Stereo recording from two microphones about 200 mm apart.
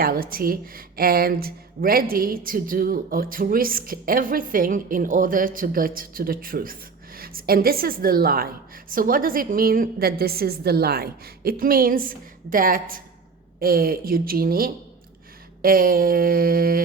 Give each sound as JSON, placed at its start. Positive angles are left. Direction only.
{"t": 0.0, "sound": "speech", "side_deg": -45}